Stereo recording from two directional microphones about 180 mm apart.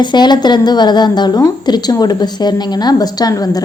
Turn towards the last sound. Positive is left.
turn(degrees=20)  # may be behind; listen again after turning